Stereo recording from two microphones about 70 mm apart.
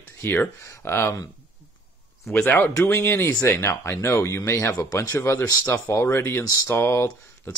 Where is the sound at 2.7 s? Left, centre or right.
Left.